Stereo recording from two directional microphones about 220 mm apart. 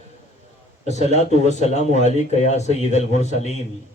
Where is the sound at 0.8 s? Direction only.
30° left (ahead or behind).